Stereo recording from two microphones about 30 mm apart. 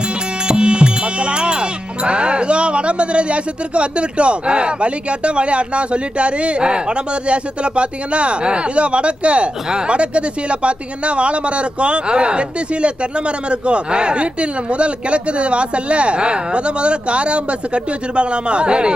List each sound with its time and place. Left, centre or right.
0.4 s music: right
9.6 s speech: right
9.9 s speech: right